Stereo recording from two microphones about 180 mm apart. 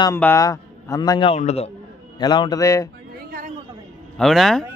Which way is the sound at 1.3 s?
35° left (ahead or behind).